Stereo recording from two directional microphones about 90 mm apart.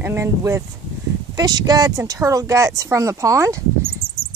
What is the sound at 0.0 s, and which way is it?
Speech, 25° right (ahead or behind).